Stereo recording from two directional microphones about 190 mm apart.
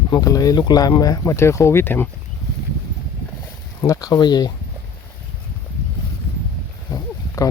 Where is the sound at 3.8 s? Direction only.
15° left (ahead or behind).